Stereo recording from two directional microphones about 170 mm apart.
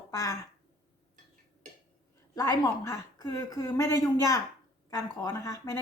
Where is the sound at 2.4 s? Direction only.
20° left (ahead or behind).